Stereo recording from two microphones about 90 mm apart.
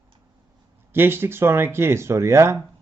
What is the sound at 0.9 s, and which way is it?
Speech, 25° right (ahead or behind).